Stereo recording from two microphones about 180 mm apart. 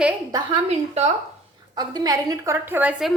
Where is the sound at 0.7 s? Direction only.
35° right (ahead or behind).